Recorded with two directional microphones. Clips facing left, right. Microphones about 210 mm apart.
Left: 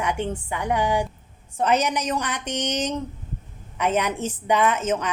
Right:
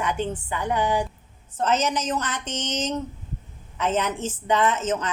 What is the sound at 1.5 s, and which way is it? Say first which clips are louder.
A woman's voice: left 2 dB; 15° left (ahead or behind).